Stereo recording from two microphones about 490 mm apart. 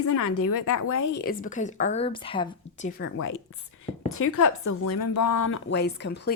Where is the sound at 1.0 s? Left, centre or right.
Left.